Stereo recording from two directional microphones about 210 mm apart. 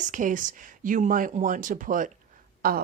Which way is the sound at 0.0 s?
40° right (ahead or behind).